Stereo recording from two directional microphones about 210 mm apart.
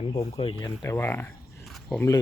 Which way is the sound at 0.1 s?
25° left (ahead or behind).